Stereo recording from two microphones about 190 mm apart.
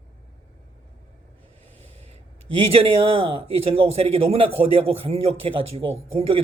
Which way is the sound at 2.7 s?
30° right (ahead or behind).